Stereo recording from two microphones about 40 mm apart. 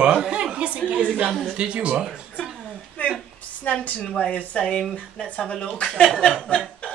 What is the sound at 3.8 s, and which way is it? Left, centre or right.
Speech, left.